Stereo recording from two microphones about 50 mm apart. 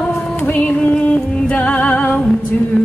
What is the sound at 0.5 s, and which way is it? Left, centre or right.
Music, left.